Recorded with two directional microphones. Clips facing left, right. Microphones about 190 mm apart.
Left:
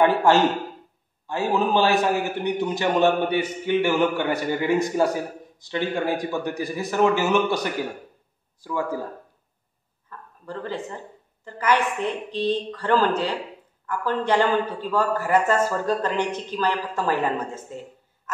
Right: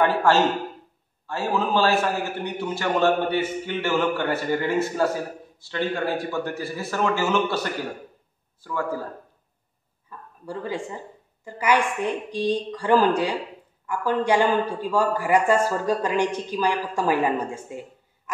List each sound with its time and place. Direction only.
0.0 s a man's voice: 15° left (ahead or behind)
10.0 s a sound: 10° right (ahead or behind)
11.4 s a man's voice: 10° right (ahead or behind)